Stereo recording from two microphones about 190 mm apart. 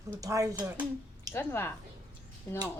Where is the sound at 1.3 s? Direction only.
10° left (ahead or behind).